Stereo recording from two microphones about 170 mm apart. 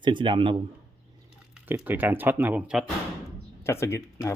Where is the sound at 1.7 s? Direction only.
10° right (ahead or behind).